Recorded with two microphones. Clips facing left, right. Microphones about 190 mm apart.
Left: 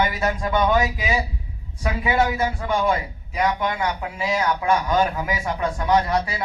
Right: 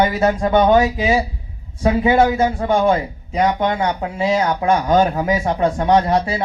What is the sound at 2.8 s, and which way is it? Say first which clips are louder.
Speech: right 6 dB; 30° right (ahead or behind).